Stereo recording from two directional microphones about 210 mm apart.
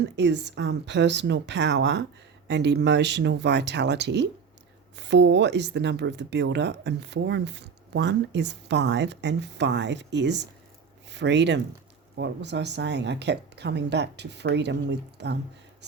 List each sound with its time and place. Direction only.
0.0 s speech: 55° right (ahead or behind)